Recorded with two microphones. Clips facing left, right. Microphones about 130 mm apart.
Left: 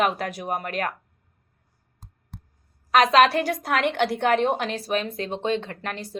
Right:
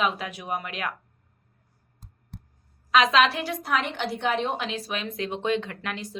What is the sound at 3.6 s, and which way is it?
A woman's voice, 70° left (ahead or behind).